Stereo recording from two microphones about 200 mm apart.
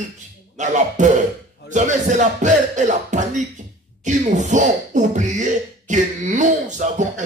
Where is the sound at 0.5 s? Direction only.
40° right (ahead or behind).